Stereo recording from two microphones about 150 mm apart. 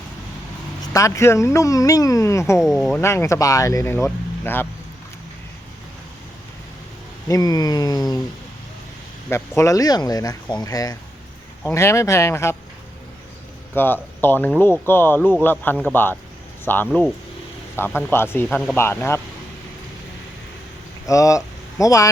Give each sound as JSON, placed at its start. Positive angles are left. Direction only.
{"t": 0.8, "sound": "speech", "side_deg": 20}
{"t": 7.3, "sound": "speech", "side_deg": 25}
{"t": 9.3, "sound": "speech", "side_deg": 20}
{"t": 13.7, "sound": "a man's voice", "side_deg": 15}
{"t": 18.4, "sound": "speech", "side_deg": 5}
{"t": 18.8, "sound": "a man's voice", "side_deg": 15}
{"t": 21.1, "sound": "speech", "side_deg": 20}